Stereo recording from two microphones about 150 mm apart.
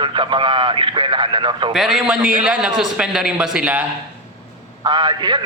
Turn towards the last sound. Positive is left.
turn(degrees=-30)  # may be behind; listen again after turning